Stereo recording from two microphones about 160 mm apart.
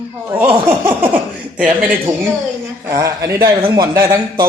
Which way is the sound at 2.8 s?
20° right (ahead or behind).